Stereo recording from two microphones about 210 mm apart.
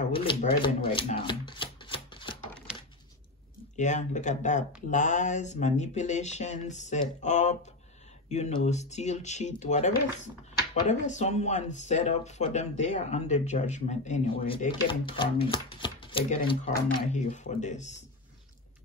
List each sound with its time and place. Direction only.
0.1 s speech: 25° left (ahead or behind)
0.8 s shuffling cards: 25° left (ahead or behind)
3.7 s speech: 35° left (ahead or behind)